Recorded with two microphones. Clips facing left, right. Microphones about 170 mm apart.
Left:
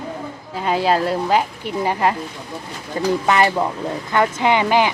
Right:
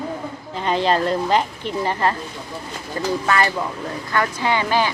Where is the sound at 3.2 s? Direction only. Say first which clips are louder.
Left 4 dB; 20° left (ahead or behind).